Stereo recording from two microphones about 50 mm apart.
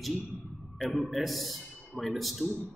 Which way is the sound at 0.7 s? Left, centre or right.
Centre.